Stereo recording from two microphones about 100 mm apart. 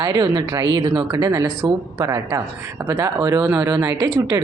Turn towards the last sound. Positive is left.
turn(degrees=-35)  # may be behind; listen again after turning